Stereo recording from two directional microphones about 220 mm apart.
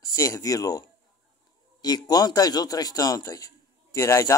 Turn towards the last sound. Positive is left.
turn(degrees=15)  # may be behind; listen again after turning